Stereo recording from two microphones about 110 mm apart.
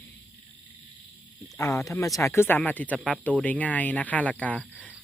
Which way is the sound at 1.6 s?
25° left (ahead or behind).